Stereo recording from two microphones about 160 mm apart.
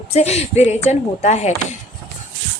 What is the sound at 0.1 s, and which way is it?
Speech, 40° left (ahead or behind).